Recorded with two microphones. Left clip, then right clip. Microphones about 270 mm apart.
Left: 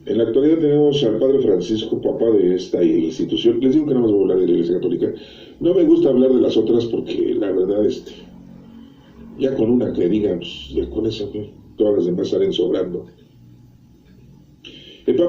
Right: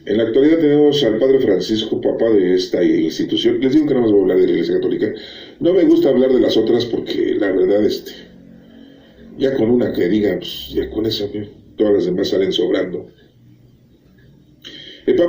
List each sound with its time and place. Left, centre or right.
0.0 s a man's voice: right
9.4 s a man's voice: right
14.6 s a sound: right